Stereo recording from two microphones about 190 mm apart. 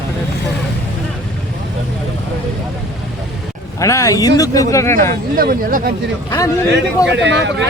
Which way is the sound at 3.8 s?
15° left (ahead or behind).